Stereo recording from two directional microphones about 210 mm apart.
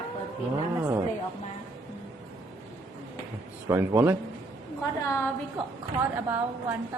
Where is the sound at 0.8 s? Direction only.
10° right (ahead or behind).